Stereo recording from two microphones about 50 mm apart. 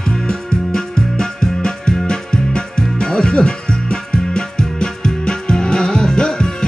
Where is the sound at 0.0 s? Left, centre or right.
Centre.